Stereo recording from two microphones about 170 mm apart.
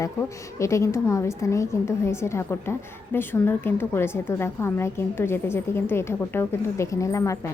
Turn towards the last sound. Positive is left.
turn(degrees=20)  # may be behind; listen again after turning